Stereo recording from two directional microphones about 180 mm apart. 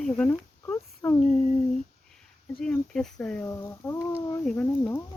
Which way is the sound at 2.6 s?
5° left (ahead or behind).